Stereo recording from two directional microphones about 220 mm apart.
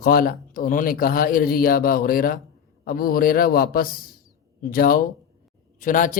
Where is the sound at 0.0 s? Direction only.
40° left (ahead or behind).